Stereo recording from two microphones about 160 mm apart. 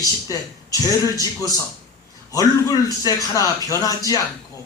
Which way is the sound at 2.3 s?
20° left (ahead or behind).